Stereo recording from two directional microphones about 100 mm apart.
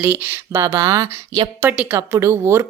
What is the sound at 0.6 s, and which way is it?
Speech, 30° right (ahead or behind).